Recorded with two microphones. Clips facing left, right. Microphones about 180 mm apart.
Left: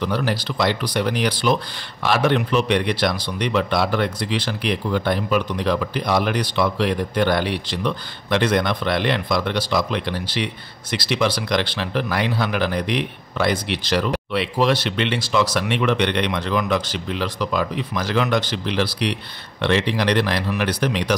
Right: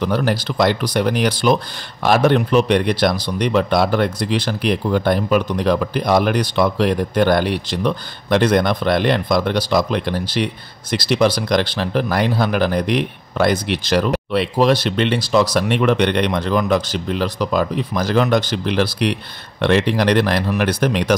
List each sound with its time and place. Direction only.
0.0 s speech: 45° right (ahead or behind)